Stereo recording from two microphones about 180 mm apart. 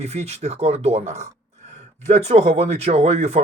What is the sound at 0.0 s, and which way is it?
Speech, 35° right (ahead or behind).